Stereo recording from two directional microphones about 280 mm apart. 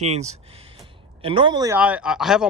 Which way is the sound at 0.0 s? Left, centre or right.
Right.